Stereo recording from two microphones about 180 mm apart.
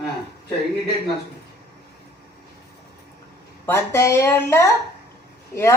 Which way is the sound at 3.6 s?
15° left (ahead or behind).